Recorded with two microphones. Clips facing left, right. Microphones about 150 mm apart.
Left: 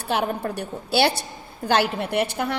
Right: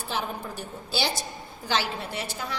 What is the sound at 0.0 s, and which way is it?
A woman's voice, 65° left (ahead or behind).